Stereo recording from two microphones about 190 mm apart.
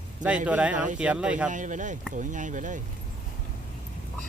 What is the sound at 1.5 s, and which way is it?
Speech, 40° right (ahead or behind).